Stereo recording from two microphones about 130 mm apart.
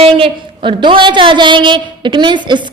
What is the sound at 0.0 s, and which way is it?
A woman's voice, 40° right (ahead or behind).